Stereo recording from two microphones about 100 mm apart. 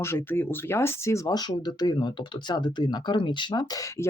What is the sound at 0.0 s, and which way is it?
Speech, 25° left (ahead or behind).